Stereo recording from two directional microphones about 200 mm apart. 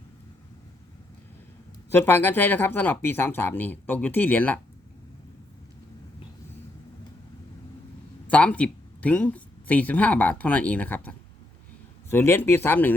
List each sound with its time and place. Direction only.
1.9 s speech: 10° left (ahead or behind)
8.3 s speech: 5° left (ahead or behind)
12.1 s speech: 10° left (ahead or behind)